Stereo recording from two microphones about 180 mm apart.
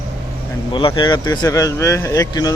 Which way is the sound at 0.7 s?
25° left (ahead or behind).